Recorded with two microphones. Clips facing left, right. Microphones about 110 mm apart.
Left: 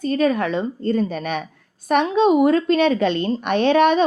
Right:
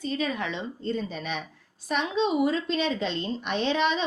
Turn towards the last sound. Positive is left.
turn(degrees=55)  # may be behind; listen again after turning